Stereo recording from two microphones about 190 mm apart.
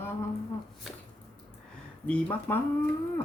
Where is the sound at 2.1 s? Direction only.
10° left (ahead or behind).